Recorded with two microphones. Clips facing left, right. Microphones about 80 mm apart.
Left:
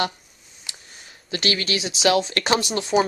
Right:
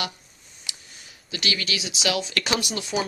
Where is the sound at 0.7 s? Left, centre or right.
Left.